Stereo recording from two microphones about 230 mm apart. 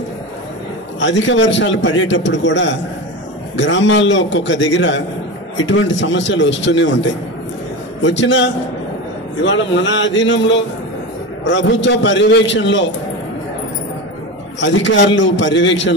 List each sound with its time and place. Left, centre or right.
0.9 s a man's voice: left
14.6 s a man's voice: left